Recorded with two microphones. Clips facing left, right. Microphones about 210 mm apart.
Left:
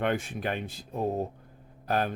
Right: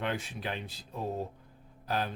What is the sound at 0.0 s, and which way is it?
Speech, 50° left (ahead or behind).